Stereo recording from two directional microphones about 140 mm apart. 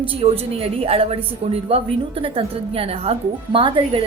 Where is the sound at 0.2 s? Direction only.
45° right (ahead or behind).